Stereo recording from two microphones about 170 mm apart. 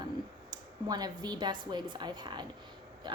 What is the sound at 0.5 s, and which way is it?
A woman's voice, 25° right (ahead or behind).